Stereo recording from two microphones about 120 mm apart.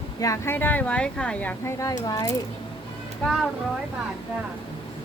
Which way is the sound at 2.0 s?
30° left (ahead or behind).